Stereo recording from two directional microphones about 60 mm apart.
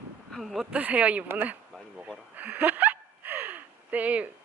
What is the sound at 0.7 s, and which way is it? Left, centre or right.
Speech, right.